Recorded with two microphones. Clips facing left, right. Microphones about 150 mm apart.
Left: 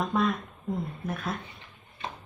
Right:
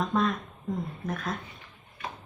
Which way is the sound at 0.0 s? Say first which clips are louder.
Even; 5° left (ahead or behind).